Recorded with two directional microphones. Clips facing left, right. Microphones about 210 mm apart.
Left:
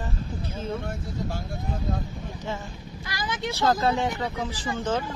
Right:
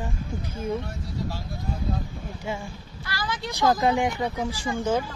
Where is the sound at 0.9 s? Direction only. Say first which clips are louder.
Left 1 dB; 50° left (ahead or behind).